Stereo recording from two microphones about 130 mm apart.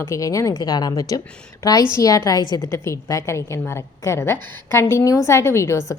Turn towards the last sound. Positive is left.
turn(degrees=20)  # may be behind; listen again after turning